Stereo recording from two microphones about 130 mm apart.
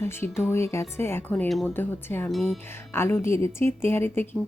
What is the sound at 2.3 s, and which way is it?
Speech, centre (ahead or behind).